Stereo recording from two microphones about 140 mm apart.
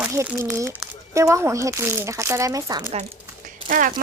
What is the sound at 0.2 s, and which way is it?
A child's voice, 25° right (ahead or behind).